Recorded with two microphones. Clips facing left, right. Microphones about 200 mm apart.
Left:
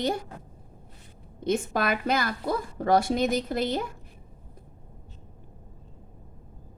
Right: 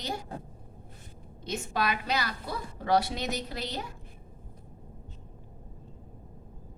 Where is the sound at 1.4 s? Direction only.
50° left (ahead or behind).